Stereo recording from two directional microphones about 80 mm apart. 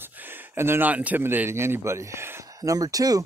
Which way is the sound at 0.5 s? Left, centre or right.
Right.